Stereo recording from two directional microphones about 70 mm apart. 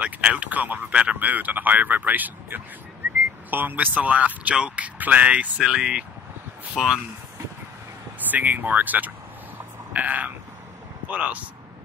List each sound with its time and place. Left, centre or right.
0.0 s speech: centre
8.3 s speech: right